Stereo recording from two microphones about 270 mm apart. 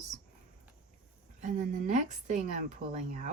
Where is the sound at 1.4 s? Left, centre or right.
Right.